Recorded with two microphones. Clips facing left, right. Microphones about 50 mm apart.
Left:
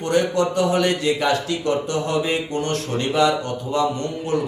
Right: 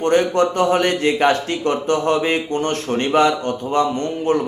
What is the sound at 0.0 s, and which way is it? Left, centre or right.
A man's voice, right.